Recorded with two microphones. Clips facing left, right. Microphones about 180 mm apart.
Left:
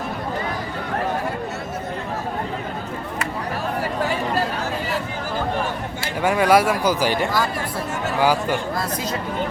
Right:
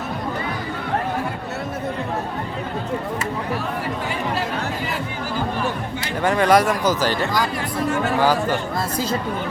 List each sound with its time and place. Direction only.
6.2 s speech: 10° left (ahead or behind)